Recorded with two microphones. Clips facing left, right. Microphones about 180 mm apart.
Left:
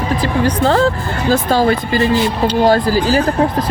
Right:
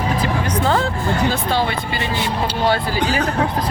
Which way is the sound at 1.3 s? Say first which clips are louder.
Left 7 dB; 40° left (ahead or behind).